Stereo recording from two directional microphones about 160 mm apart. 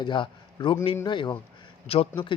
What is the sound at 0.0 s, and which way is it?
A man's voice, 30° left (ahead or behind).